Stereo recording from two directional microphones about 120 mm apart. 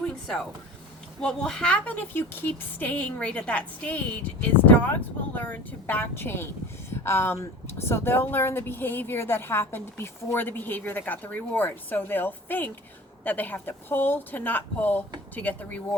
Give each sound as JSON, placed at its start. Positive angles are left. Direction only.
{"t": 1.2, "sound": "speech", "side_deg": 5}